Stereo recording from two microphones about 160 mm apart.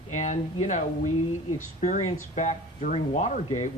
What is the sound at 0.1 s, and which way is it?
Speech, 50° left (ahead or behind).